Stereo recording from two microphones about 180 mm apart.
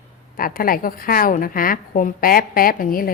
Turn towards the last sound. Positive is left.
turn(degrees=50)  # may be behind; listen again after turning